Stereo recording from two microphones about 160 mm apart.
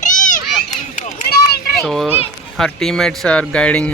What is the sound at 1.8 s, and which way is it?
Speech, centre (ahead or behind).